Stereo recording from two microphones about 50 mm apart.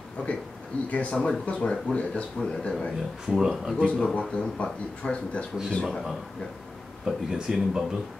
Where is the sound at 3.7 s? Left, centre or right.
Left.